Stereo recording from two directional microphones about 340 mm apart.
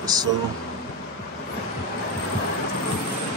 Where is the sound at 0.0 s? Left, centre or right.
Centre.